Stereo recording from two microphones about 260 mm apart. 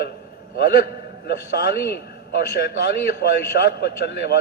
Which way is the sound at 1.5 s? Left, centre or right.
Left.